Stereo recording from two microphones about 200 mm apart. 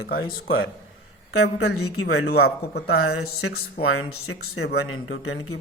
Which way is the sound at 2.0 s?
50° left (ahead or behind).